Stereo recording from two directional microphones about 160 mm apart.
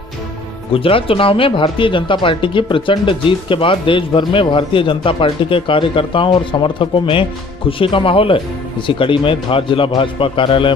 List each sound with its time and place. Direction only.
0.7 s speech: 35° left (ahead or behind)